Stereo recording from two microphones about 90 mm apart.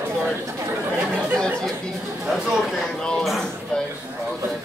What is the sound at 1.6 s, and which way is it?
Chatter, centre (ahead or behind).